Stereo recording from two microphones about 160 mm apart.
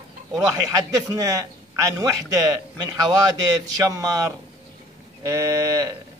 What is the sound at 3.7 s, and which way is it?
A man's voice, 20° right (ahead or behind).